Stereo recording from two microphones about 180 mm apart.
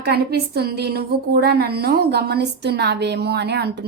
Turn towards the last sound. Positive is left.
turn(degrees=-65)  # may be behind; listen again after turning